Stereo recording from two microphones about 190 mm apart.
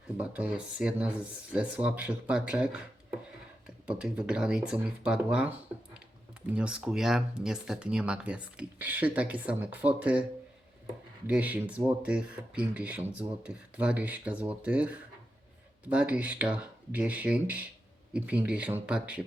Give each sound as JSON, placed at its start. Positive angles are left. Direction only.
{"t": 0.2, "sound": "speech", "side_deg": -5}
{"t": 11.3, "sound": "speech", "side_deg": -10}